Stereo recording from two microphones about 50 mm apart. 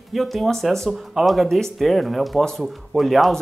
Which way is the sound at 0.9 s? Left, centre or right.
Centre.